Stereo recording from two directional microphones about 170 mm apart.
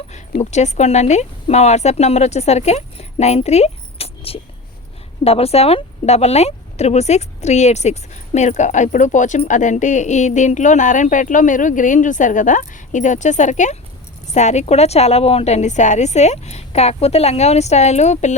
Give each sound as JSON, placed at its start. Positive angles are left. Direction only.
{"t": 0.5, "sound": "speech", "side_deg": 40}